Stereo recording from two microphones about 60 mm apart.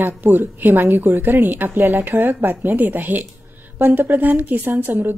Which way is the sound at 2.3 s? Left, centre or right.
Right.